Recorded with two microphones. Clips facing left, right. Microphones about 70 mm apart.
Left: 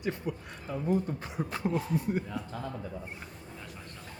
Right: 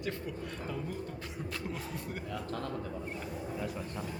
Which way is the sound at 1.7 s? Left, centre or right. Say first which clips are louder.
Left 8 dB; centre.